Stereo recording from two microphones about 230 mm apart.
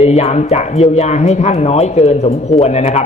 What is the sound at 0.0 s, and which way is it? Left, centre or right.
A man's voice, left.